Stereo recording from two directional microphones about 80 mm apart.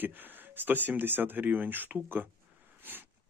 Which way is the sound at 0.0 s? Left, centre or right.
Right.